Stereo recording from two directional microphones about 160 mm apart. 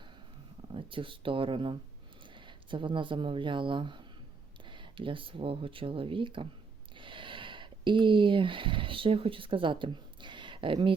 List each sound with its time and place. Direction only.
0.7 s speech: 30° right (ahead or behind)